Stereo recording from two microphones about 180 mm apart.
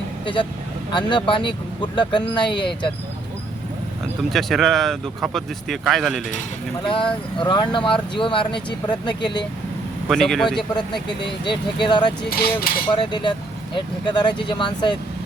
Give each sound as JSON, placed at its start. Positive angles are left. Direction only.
{"t": 0.9, "sound": "speech", "side_deg": 25}
{"t": 4.2, "sound": "speech", "side_deg": 0}
{"t": 6.8, "sound": "speech", "side_deg": 30}
{"t": 10.1, "sound": "speech", "side_deg": 0}
{"t": 11.3, "sound": "speech", "side_deg": 25}
{"t": 12.3, "sound": "speech", "side_deg": 55}
{"t": 12.9, "sound": "speech", "side_deg": 25}